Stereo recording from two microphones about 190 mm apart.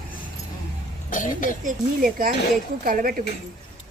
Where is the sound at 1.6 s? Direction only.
45° right (ahead or behind).